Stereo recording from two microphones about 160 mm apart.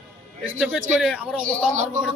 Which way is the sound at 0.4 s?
10° right (ahead or behind).